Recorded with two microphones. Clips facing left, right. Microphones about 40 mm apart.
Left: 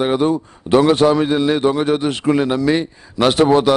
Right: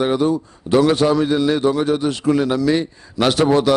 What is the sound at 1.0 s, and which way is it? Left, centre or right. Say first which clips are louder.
A man's voice: left 2 dB; left.